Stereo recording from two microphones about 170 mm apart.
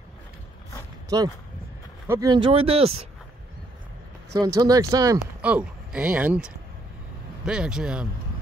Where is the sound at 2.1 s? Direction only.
20° right (ahead or behind).